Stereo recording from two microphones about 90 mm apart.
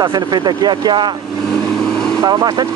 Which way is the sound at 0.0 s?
55° right (ahead or behind).